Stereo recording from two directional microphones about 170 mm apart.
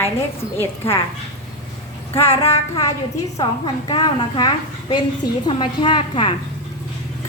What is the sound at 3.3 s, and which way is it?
A woman's voice, 25° left (ahead or behind).